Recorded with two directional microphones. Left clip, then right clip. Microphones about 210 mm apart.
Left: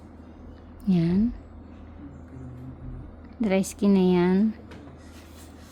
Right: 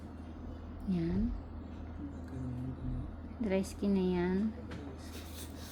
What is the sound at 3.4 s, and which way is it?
Speech, 55° left (ahead or behind).